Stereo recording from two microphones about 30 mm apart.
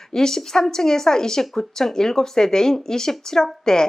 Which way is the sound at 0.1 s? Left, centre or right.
Centre.